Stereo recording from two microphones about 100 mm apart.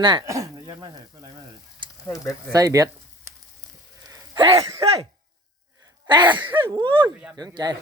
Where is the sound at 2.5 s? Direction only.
35° right (ahead or behind).